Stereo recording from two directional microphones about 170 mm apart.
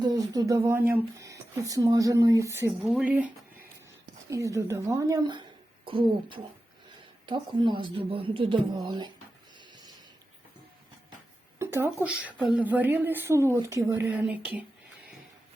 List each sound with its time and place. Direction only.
0.0 s speech: 20° right (ahead or behind)
2.8 s speech: 5° right (ahead or behind)
4.3 s a woman's voice: 20° right (ahead or behind)
9.6 s a sound: 25° right (ahead or behind)
11.6 s speech: 15° right (ahead or behind)